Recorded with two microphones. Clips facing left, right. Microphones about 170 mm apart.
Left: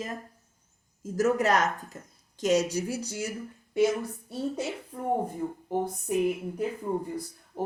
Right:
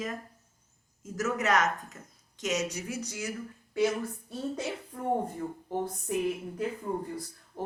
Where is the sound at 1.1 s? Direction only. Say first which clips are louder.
Left 4 dB; 35° left (ahead or behind).